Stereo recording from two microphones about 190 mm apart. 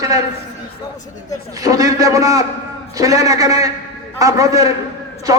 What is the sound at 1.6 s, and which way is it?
A man's voice, 20° right (ahead or behind).